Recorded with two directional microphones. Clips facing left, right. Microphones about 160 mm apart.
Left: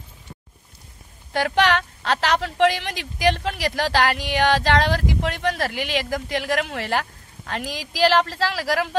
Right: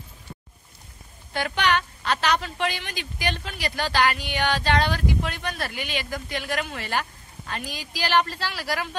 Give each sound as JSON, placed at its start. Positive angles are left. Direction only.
{"t": 1.3, "sound": "a woman's voice", "side_deg": 85}